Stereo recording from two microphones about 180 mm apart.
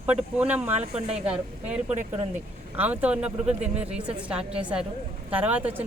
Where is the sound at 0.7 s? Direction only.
35° right (ahead or behind).